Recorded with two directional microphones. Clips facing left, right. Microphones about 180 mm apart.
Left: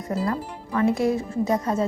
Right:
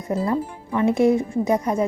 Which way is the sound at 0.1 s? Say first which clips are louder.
Right 4 dB; 20° right (ahead or behind).